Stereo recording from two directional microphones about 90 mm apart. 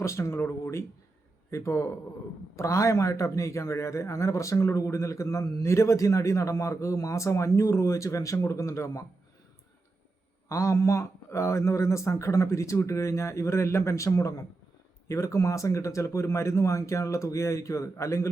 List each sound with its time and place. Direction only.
0.0 s a man's voice: 30° left (ahead or behind)
10.5 s a man's voice: 35° left (ahead or behind)